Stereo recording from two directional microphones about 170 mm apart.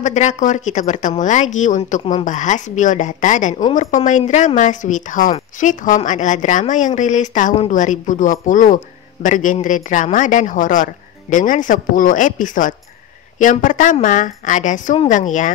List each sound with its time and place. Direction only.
0.0 s speech: 45° left (ahead or behind)